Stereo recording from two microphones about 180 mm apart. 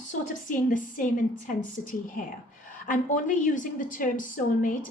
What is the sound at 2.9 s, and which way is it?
A woman's voice, 45° left (ahead or behind).